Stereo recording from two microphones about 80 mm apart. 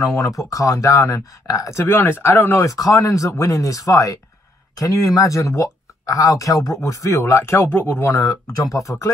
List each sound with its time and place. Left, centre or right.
0.1 s speech: left
2.6 s speech: left
8.1 s speech: left